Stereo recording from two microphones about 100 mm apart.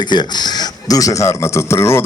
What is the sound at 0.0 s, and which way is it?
Speech, 50° left (ahead or behind).